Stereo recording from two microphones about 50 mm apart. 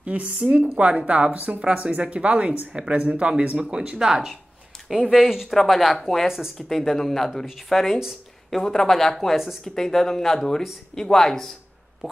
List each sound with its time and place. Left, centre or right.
0.0 s speech: right
5.2 s speech: centre
6.2 s speech: centre
6.7 s speech: centre